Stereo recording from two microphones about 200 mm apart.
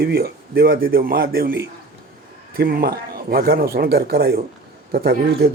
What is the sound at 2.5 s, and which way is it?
A man's voice, 45° right (ahead or behind).